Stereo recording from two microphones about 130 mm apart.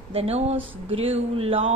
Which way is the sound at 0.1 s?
50° right (ahead or behind).